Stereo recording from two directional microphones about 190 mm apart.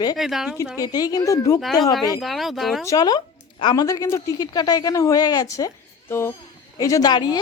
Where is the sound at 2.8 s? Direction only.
20° left (ahead or behind).